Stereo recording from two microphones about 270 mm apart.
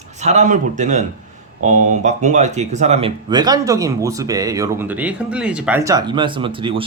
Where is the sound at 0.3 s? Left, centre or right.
Right.